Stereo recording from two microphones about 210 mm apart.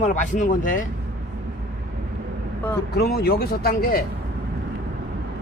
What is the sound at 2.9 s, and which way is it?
Speech, 50° left (ahead or behind).